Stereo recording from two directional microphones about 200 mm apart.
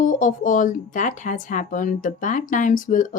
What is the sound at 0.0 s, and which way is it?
Speech, 40° left (ahead or behind).